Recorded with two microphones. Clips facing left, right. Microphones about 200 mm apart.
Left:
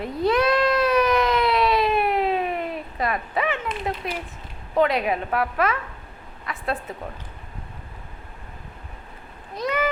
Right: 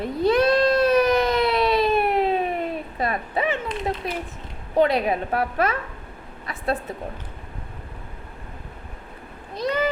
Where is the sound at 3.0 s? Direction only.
30° right (ahead or behind).